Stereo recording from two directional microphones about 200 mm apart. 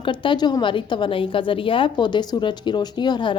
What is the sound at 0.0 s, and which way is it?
A woman's voice, 25° left (ahead or behind).